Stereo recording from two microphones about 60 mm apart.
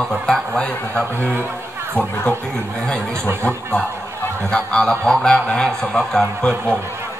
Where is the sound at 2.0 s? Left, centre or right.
Left.